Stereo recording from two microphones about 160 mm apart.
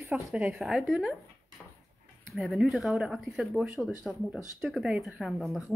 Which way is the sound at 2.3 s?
Centre (ahead or behind).